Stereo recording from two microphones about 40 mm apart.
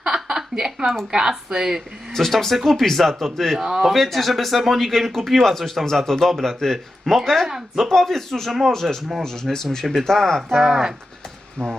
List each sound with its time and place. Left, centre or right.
0.0 s a sound: centre
1.1 s speech: centre
2.1 s speech: centre
11.6 s speech: left